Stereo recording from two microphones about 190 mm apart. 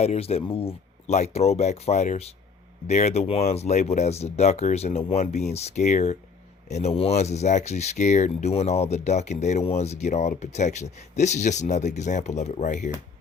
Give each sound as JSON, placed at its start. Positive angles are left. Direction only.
{"t": 0.0, "sound": "speech", "side_deg": 35}